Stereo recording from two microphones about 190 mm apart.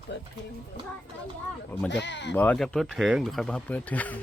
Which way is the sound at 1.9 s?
65° left (ahead or behind).